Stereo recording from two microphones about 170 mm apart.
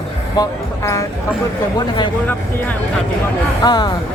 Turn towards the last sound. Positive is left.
turn(degrees=25)  # may be behind; listen again after turning